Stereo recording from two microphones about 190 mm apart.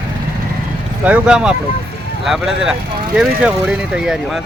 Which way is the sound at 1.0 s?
5° right (ahead or behind).